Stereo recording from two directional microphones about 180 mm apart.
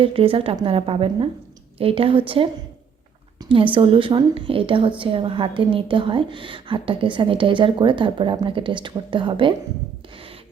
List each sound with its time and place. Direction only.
0.0 s a woman's voice: 30° right (ahead or behind)
3.5 s a woman's voice: 30° right (ahead or behind)